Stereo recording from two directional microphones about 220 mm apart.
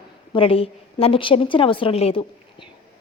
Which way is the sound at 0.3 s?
25° left (ahead or behind).